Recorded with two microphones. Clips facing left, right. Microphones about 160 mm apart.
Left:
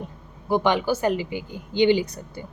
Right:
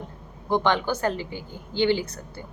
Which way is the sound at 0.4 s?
10° left (ahead or behind).